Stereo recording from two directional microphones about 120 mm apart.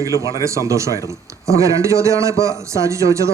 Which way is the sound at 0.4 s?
25° right (ahead or behind).